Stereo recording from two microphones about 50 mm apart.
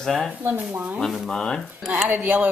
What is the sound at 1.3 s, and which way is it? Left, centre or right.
Speech, centre.